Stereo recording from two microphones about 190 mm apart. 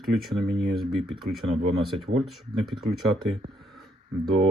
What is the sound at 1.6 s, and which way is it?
Speech, 30° right (ahead or behind).